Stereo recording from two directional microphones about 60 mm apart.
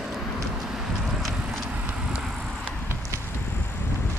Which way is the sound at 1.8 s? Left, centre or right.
Centre.